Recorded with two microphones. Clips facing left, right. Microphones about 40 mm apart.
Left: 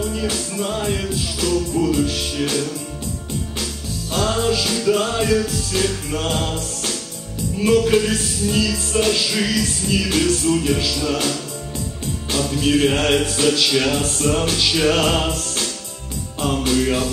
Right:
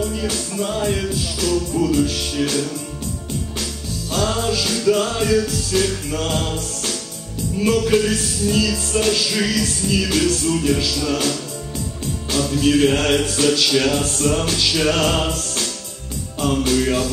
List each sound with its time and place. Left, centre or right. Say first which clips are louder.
0.0 s music: even; centre
4.1 s music: left 1 dB; centre